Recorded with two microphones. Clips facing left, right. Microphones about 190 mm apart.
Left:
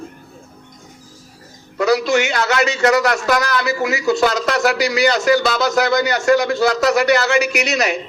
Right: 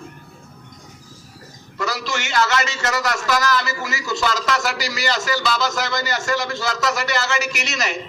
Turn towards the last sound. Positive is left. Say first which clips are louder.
# left 8 dB
turn(degrees=55)  # may be behind; listen again after turning